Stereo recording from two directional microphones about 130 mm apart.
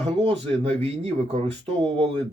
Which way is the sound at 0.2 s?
50° right (ahead or behind).